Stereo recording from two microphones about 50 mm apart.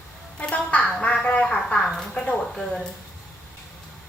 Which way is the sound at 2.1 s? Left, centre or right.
Left.